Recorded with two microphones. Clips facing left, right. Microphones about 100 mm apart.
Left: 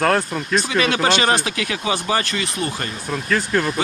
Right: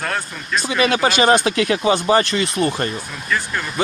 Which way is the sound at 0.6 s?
20° right (ahead or behind).